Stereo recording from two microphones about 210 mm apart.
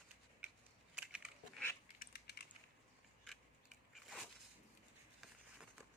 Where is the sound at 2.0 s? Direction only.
50° left (ahead or behind).